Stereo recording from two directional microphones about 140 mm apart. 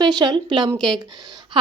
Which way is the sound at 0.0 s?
30° right (ahead or behind).